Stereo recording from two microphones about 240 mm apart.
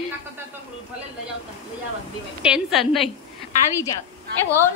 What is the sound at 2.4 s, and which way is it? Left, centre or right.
Speech, centre.